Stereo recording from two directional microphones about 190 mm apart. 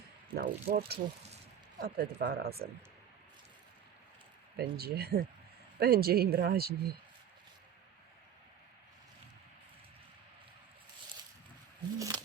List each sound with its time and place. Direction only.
0.3 s speech: 55° right (ahead or behind)
0.9 s speech: 35° right (ahead or behind)
2.0 s speech: 50° right (ahead or behind)
4.5 s speech: 55° right (ahead or behind)
11.9 s a sound: 20° right (ahead or behind)